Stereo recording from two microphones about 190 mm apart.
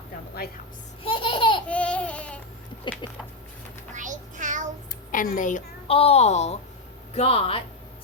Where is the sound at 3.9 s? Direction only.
40° right (ahead or behind).